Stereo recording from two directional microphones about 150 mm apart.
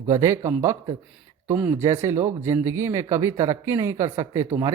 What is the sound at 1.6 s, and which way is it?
Speech, 15° right (ahead or behind).